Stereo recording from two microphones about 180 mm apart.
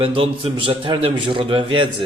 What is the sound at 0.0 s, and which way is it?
A man's voice, 30° right (ahead or behind).